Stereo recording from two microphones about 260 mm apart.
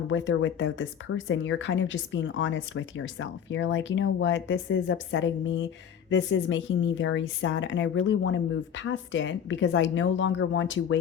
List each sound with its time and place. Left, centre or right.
0.1 s speech: left